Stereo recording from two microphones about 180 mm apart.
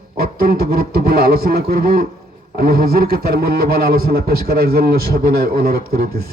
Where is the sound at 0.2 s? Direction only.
60° right (ahead or behind).